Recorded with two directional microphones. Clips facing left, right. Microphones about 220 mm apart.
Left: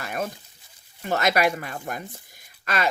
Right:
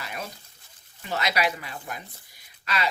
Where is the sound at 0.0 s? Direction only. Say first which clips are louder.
Left 7 dB; 50° left (ahead or behind).